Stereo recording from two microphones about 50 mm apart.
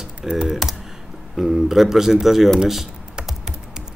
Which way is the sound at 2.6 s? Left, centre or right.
Centre.